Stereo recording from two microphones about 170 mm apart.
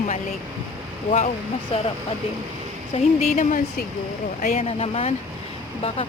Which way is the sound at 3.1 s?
45° left (ahead or behind).